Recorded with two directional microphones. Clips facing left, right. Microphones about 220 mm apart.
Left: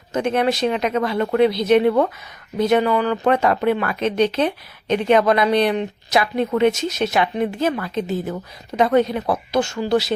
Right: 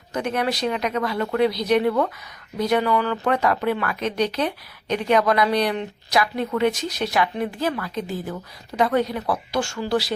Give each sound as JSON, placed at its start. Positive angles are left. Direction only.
{"t": 0.1, "sound": "speech", "side_deg": 25}